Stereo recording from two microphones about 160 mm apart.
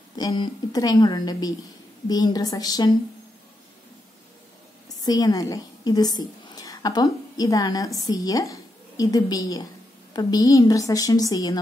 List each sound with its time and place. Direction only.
0.1 s a woman's voice: 25° left (ahead or behind)
4.8 s a woman's voice: 25° left (ahead or behind)